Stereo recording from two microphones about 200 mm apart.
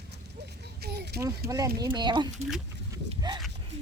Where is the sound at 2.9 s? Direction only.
20° right (ahead or behind).